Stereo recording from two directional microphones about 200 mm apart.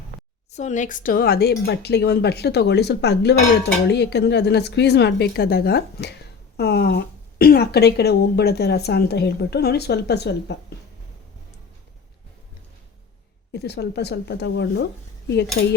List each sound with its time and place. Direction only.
0.5 s speech: 35° left (ahead or behind); by 10.3 s 55° left (ahead or behind)
13.5 s speech: 55° left (ahead or behind)
15.6 s cutlery: 50° left (ahead or behind)